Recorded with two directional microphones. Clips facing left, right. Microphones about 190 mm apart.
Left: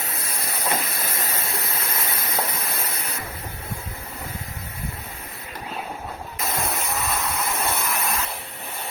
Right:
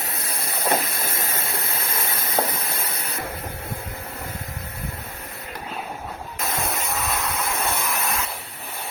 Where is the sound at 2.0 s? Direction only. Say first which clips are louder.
Right 5 dB; 50° right (ahead or behind).